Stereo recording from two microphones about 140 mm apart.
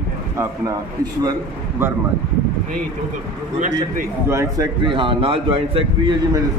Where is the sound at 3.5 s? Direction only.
60° right (ahead or behind).